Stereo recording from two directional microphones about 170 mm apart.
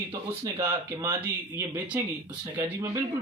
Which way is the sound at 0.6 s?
15° right (ahead or behind).